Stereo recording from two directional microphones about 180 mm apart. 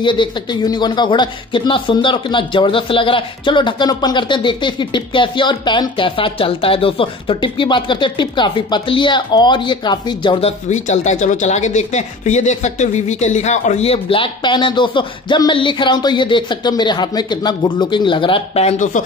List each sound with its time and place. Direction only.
0.0 s speech: 25° left (ahead or behind)
10.7 s speech: 40° left (ahead or behind)